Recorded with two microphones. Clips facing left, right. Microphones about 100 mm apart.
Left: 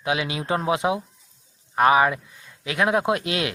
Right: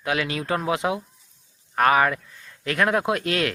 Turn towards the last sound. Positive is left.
turn(degrees=15)  # may be behind; listen again after turning